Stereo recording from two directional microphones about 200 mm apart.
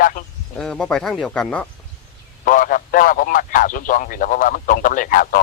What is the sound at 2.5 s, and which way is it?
A man's voice, 40° left (ahead or behind).